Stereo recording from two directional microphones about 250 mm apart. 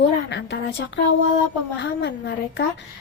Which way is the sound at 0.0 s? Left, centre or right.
Left.